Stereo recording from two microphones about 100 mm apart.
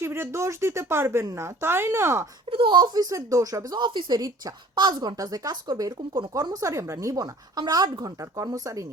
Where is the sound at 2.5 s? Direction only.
55° right (ahead or behind).